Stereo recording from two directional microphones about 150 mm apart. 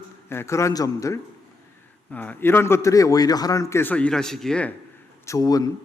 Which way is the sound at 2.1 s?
10° left (ahead or behind).